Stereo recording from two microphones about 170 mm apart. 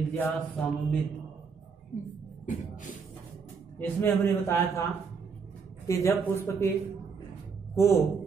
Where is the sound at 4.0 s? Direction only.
15° left (ahead or behind).